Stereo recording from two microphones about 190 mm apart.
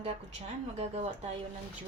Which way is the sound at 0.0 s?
35° right (ahead or behind).